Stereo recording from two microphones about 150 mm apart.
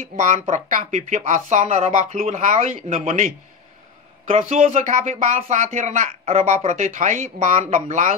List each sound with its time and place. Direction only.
0.1 s speech: 50° right (ahead or behind)
4.3 s speech: 45° right (ahead or behind)